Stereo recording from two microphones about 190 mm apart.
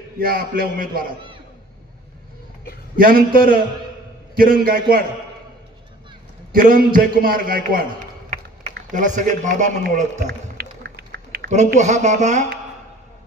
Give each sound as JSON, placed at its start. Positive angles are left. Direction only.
{"t": 0.2, "sound": "a man's voice", "side_deg": -50}
{"t": 3.0, "sound": "a man's voice", "side_deg": -50}
{"t": 6.5, "sound": "a man's voice", "side_deg": -50}
{"t": 8.9, "sound": "a man's voice", "side_deg": -40}
{"t": 10.2, "sound": "a sound", "side_deg": -60}
{"t": 11.5, "sound": "a man's voice", "side_deg": -40}